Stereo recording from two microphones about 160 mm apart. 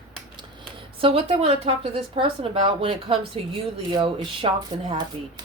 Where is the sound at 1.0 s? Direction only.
35° right (ahead or behind).